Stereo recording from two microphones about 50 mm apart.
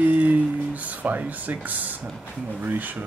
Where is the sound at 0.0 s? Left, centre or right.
Right.